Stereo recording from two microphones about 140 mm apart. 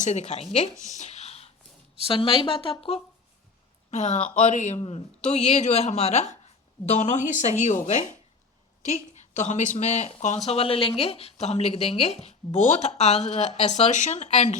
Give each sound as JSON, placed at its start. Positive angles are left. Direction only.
{"t": 0.0, "sound": "speech", "side_deg": 55}
{"t": 0.9, "sound": "a sound", "side_deg": 55}
{"t": 2.0, "sound": "speech", "side_deg": 40}
{"t": 3.9, "sound": "speech", "side_deg": 60}
{"t": 4.9, "sound": "a woman's voice", "side_deg": 50}